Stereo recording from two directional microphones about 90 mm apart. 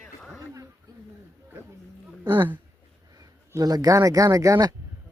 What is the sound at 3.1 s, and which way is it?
Speech, 40° right (ahead or behind).